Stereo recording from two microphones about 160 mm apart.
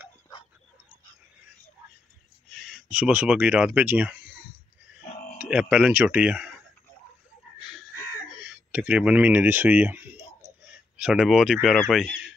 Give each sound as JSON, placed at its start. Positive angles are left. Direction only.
{"t": 2.5, "sound": "speech", "side_deg": 0}
{"t": 5.4, "sound": "speech", "side_deg": -5}
{"t": 8.3, "sound": "speech", "side_deg": -5}